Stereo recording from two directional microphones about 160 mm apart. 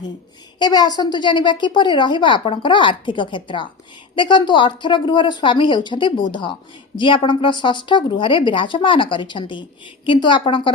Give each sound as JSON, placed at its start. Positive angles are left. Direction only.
{"t": 0.6, "sound": "a woman's voice", "side_deg": 25}